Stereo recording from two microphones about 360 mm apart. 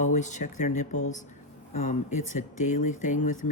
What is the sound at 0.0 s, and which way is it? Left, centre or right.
Speech, centre.